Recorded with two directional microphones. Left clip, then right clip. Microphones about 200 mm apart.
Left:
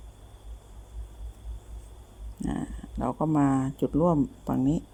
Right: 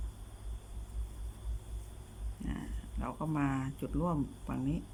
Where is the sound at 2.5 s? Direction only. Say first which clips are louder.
Left 10 dB; 30° left (ahead or behind).